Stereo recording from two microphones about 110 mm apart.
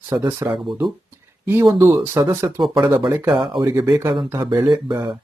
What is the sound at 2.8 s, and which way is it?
Speech, 40° right (ahead or behind).